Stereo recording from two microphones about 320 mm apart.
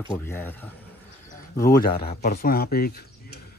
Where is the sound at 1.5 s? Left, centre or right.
Left.